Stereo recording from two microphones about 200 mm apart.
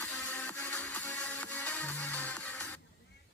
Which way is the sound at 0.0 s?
10° left (ahead or behind).